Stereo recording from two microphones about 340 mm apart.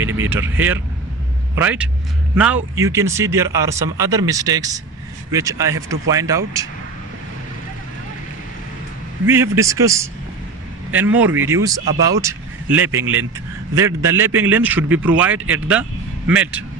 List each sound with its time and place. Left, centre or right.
0.0 s vehicle: right
0.3 s a man's voice: centre
9.2 s a man's voice: centre
13.0 s speech: right
13.7 s a man's voice: centre